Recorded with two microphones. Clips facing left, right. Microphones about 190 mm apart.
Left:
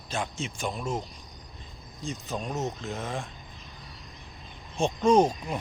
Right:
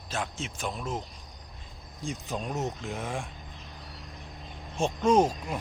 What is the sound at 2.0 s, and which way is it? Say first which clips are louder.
Speech: even; 10° right (ahead or behind).